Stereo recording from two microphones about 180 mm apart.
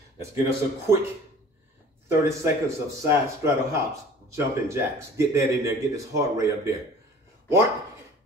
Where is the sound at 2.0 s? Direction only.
15° right (ahead or behind).